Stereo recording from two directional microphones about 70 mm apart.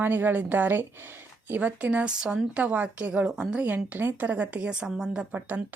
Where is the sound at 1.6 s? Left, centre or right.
Centre.